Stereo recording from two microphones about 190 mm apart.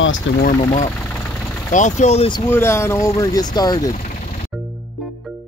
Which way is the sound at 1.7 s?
40° left (ahead or behind).